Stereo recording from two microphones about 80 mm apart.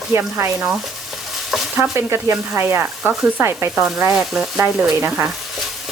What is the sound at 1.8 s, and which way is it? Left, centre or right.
Speech, right.